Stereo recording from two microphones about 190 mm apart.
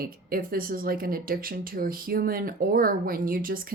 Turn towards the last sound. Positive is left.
turn(degrees=-50)  # may be behind; listen again after turning